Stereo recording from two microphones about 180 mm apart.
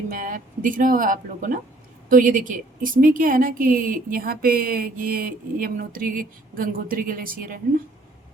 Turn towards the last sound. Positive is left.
turn(degrees=-50)  # may be behind; listen again after turning